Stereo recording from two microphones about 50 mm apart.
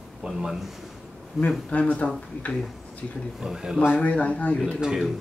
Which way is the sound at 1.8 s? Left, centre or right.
Left.